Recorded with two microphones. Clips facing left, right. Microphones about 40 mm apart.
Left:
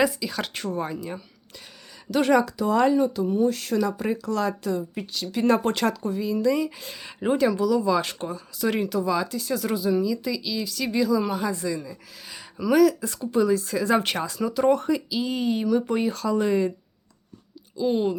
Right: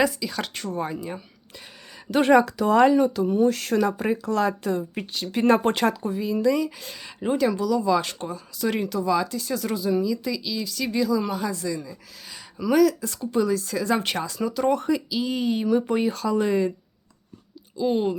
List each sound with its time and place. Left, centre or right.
0.0 s speech: centre
0.9 s speech: centre
2.0 s speech: right
2.5 s speech: right
4.1 s speech: right
5.9 s speech: centre
6.6 s speech: centre
11.8 s speech: centre
17.7 s speech: centre